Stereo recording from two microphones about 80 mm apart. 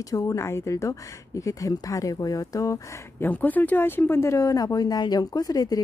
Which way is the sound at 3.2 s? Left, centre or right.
Left.